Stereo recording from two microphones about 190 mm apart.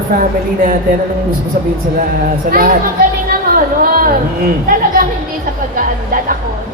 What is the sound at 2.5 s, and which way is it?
Speech, 45° right (ahead or behind).